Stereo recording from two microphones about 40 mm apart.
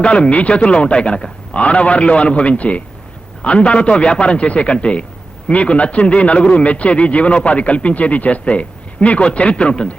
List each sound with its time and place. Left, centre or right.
0.0 s a man's voice: left